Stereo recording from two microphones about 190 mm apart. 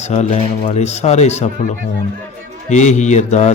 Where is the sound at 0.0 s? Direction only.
35° left (ahead or behind).